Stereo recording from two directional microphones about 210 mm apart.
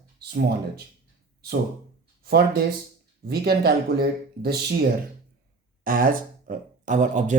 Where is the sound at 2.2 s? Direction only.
50° right (ahead or behind).